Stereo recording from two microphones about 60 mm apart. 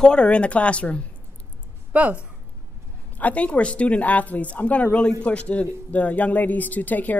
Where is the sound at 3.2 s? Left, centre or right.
Left.